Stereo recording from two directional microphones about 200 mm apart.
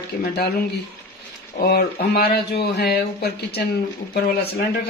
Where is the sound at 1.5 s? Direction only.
50° left (ahead or behind).